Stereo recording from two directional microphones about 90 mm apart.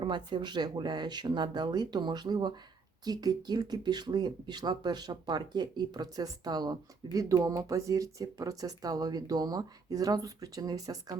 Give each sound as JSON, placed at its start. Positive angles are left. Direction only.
{"t": 0.0, "sound": "speech", "side_deg": -60}